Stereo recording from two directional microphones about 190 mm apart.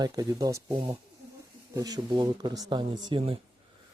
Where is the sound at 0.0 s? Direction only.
20° right (ahead or behind).